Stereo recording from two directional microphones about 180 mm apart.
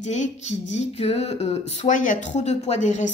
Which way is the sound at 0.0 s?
40° left (ahead or behind).